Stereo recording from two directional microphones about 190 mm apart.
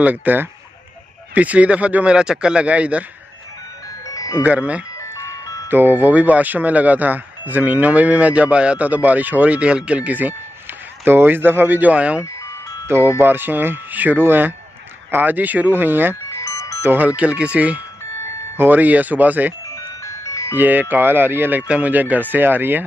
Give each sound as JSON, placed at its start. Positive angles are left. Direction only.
{"t": 0.0, "sound": "speech", "side_deg": -10}
{"t": 4.1, "sound": "ice cream truck", "side_deg": 15}
{"t": 4.4, "sound": "speech", "side_deg": -5}
{"t": 16.3, "sound": "music", "side_deg": 15}
{"t": 16.8, "sound": "speech", "side_deg": -10}
{"t": 19.7, "sound": "music", "side_deg": 15}
{"t": 20.5, "sound": "speech", "side_deg": -10}